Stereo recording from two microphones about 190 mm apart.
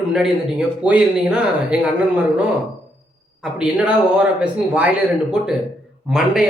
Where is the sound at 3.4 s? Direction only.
5° right (ahead or behind).